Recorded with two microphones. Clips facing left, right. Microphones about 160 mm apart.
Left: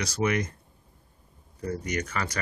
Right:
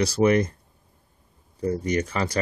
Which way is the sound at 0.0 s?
35° right (ahead or behind).